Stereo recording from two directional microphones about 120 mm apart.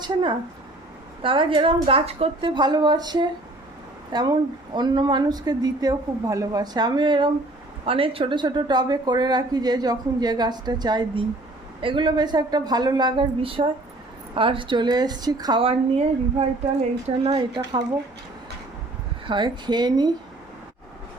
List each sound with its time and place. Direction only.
0.0 s a woman's voice: 40° right (ahead or behind)
15.6 s a woman's voice: 55° right (ahead or behind)
17.3 s a woman's voice: 35° right (ahead or behind)
19.3 s a woman's voice: 40° right (ahead or behind)